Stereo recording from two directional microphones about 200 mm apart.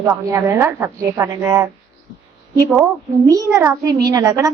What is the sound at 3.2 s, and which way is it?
A woman's voice, 15° right (ahead or behind).